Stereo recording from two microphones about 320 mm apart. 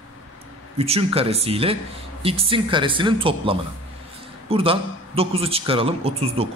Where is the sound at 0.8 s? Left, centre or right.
Centre.